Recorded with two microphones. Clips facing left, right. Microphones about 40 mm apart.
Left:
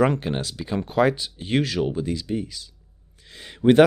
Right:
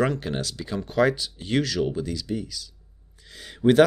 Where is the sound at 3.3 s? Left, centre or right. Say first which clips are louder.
Left 1 dB; left.